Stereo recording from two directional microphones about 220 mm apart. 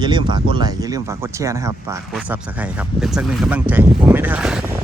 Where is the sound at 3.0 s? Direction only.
Centre (ahead or behind).